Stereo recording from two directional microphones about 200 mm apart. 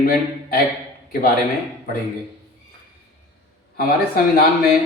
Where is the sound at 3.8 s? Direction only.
50° left (ahead or behind).